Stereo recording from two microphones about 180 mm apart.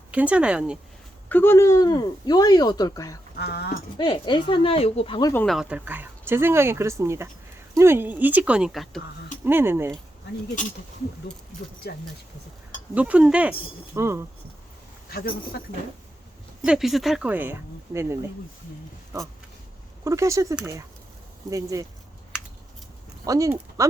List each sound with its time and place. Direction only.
0.1 s speech: 5° right (ahead or behind)
1.3 s speech: 10° left (ahead or behind)
3.3 s speech: 65° left (ahead or behind)
3.9 s speech: 30° left (ahead or behind)
5.3 s speech: 10° left (ahead or behind)
5.5 s speech: 5° right (ahead or behind)
9.4 s speech: 10° right (ahead or behind)
11.9 s speech: 60° left (ahead or behind)
12.9 s speech: 10° right (ahead or behind)
16.6 s speech: centre (ahead or behind); by 21.8 s 20° right (ahead or behind)
23.2 s speech: 20° right (ahead or behind)